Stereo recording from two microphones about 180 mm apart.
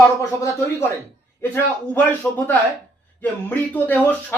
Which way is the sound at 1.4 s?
15° left (ahead or behind).